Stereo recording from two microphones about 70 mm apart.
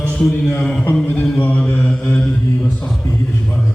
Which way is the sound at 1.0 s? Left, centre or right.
Left.